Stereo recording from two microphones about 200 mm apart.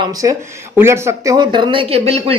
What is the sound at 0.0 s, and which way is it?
Speech, 15° right (ahead or behind).